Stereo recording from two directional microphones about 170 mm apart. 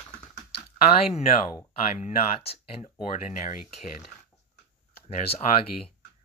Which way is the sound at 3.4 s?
50° left (ahead or behind).